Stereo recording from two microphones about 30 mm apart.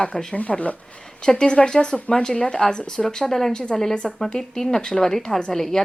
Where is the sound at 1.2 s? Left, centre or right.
Left.